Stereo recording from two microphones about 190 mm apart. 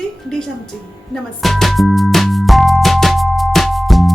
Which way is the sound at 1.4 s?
Centre (ahead or behind).